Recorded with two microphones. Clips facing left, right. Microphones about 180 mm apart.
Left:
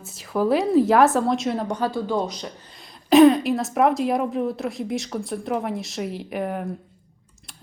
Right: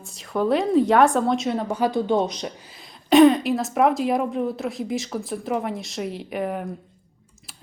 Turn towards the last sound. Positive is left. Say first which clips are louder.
# even
turn(degrees=0)  # may be behind; listen again after turning